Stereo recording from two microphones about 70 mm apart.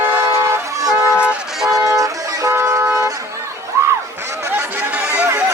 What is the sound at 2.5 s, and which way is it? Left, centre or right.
Vehicle, right.